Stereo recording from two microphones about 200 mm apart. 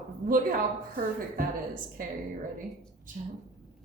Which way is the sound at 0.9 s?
45° right (ahead or behind).